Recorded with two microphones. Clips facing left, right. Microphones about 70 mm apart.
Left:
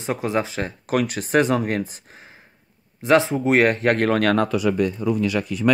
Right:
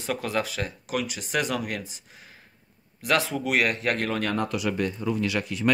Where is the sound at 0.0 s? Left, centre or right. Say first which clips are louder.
Left 5 dB; left.